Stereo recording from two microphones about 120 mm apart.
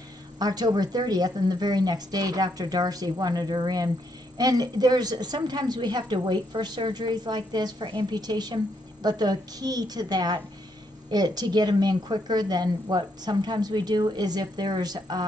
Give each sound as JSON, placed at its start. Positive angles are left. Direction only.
{"t": 0.4, "sound": "a woman's voice", "side_deg": -35}